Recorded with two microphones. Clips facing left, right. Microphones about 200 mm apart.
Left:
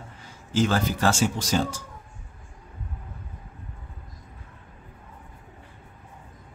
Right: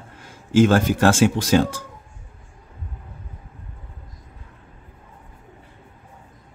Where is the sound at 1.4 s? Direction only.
60° right (ahead or behind).